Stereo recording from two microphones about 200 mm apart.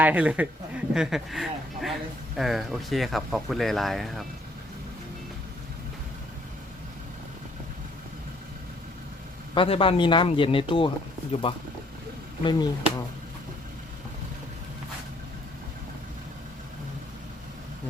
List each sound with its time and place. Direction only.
0.0 s a man's voice: 10° right (ahead or behind)
9.6 s speech: 25° left (ahead or behind)